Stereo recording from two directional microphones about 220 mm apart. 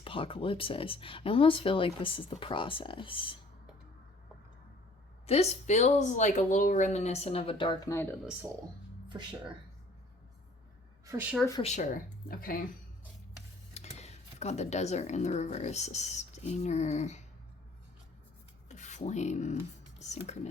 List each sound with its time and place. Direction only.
0.0 s speech: 25° left (ahead or behind)
5.2 s speech: 30° left (ahead or behind)
11.0 s a woman's voice: 10° right (ahead or behind)
11.6 s speech: 35° left (ahead or behind)
13.7 s speech: 30° left (ahead or behind)
18.7 s speech: 35° left (ahead or behind)